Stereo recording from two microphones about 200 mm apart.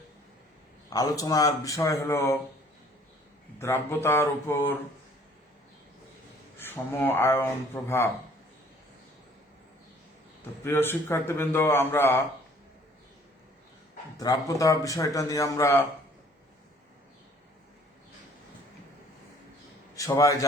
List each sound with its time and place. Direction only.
0.9 s speech: 15° left (ahead or behind)
3.6 s speech: 10° left (ahead or behind)
6.6 s speech: 10° left (ahead or behind)
10.6 s speech: 10° left (ahead or behind)
14.2 s speech: 15° left (ahead or behind)
20.0 s speech: 15° left (ahead or behind)